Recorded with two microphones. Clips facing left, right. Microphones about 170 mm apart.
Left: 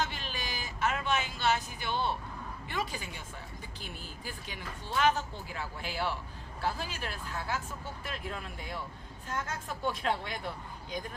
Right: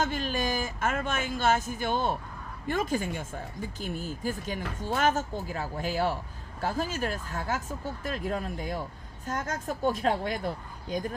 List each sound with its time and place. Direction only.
0.0 s speech: 45° right (ahead or behind)